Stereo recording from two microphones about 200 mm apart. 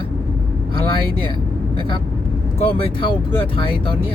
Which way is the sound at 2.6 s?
25° left (ahead or behind).